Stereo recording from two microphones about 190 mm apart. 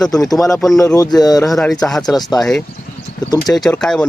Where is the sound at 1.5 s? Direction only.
Centre (ahead or behind).